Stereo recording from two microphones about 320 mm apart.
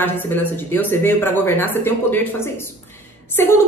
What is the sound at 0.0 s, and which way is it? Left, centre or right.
A woman's voice, centre.